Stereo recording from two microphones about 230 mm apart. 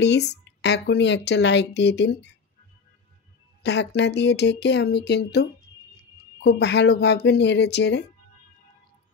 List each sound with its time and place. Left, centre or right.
0.0 s speech: left
3.6 s speech: left